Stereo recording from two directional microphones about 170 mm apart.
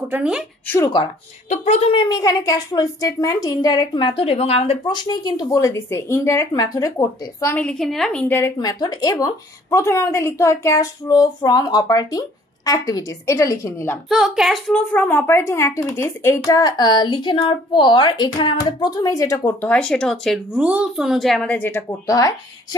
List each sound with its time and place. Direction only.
0.1 s speech: 5° right (ahead or behind)
0.7 s a woman's voice: 15° left (ahead or behind)
1.5 s a woman's voice: 40° left (ahead or behind); by 7.6 s 15° left (ahead or behind)
7.6 s a woman's voice: 5° left (ahead or behind)
14.0 s a woman's voice: centre (ahead or behind); by 19.7 s 15° left (ahead or behind)
19.7 s speech: 5° left (ahead or behind); by 22.8 s 20° left (ahead or behind)